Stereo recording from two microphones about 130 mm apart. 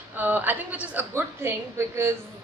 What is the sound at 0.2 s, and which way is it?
A woman's voice, 15° right (ahead or behind).